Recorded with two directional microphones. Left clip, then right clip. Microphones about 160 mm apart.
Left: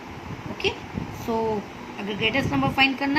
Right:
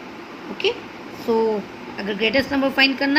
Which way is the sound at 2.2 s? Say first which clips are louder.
Right 4 dB; 25° right (ahead or behind).